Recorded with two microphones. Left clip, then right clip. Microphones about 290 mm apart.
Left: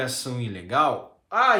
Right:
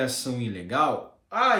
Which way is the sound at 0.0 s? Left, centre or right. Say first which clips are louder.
Right 1 dB; centre.